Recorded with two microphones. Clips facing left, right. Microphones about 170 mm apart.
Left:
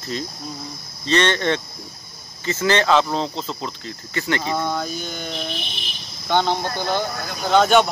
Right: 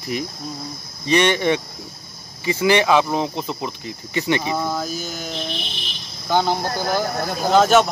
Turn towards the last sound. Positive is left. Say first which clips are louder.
# right 1 dB
turn(degrees=0)  # may be behind; listen again after turning